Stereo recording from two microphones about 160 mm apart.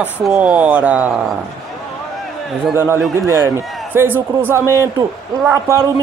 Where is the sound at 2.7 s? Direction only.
15° right (ahead or behind).